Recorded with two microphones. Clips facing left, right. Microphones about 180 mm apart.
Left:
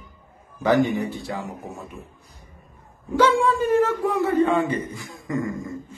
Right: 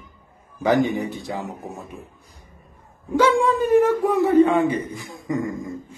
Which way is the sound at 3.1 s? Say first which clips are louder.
Right 1 dB; 10° right (ahead or behind).